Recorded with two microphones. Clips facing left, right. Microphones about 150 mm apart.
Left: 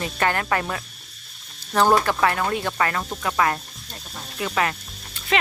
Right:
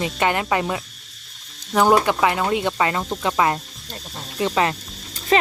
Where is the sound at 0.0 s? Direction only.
15° right (ahead or behind).